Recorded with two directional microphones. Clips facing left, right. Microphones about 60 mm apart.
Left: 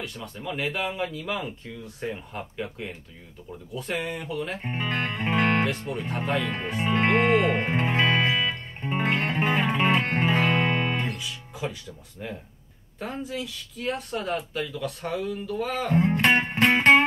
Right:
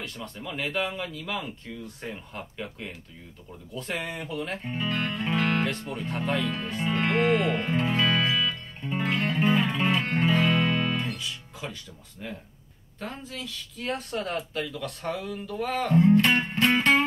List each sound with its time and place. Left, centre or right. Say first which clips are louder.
0.0 s speech: left 2 dB; centre
4.6 s music: even; left
6.0 s speech: even; centre
6.8 s music: left 3 dB; left
11.1 s music: left 2 dB; centre
13.0 s speech: left 5 dB; centre
16.0 s music: right 2 dB; left